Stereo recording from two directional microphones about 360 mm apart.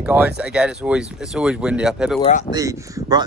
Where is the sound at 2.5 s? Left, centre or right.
Centre.